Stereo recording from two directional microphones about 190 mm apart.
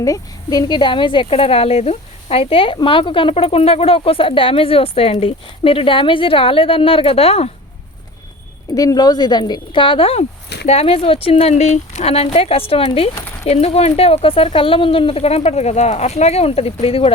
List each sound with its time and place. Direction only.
0.0 s speech: 20° left (ahead or behind)
8.7 s speech: 20° left (ahead or behind)